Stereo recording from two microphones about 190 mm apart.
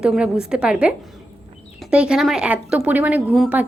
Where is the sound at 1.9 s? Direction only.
5° right (ahead or behind).